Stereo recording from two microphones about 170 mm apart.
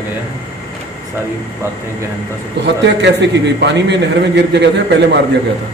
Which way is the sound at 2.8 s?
90° right.